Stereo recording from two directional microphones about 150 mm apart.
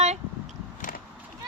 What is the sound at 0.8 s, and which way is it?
Vehicle, 70° left (ahead or behind).